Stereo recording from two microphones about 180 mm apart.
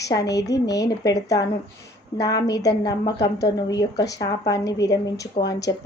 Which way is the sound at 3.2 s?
70° left (ahead or behind).